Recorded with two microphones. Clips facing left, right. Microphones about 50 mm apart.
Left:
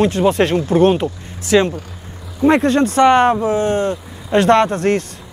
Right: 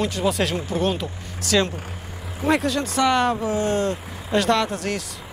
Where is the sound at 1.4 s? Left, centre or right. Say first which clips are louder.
Left 7 dB; left.